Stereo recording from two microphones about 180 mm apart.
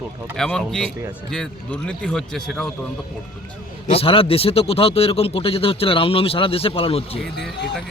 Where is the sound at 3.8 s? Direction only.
30° left (ahead or behind).